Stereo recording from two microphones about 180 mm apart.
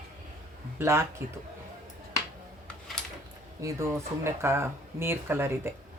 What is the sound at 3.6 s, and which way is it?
Speech, 15° right (ahead or behind).